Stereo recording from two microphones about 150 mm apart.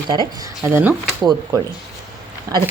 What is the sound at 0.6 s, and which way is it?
Speech, 15° right (ahead or behind).